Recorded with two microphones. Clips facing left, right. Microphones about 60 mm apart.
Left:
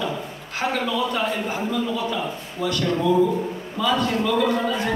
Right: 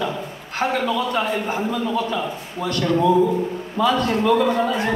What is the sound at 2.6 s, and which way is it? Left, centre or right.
A man's voice, right.